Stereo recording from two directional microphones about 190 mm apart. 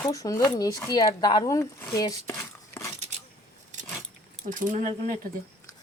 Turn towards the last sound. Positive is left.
turn(degrees=-45)  # may be behind; listen again after turning